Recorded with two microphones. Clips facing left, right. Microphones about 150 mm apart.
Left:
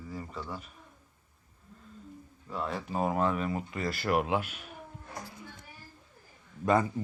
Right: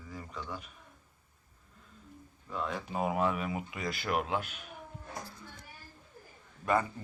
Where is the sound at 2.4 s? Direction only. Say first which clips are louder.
Left 2 dB; 5° left (ahead or behind).